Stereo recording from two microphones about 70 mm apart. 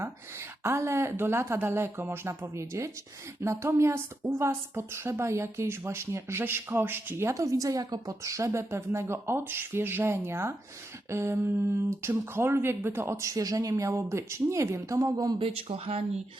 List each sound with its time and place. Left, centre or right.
0.0 s a woman's voice: right
8.4 s speech: right
15.0 s speech: right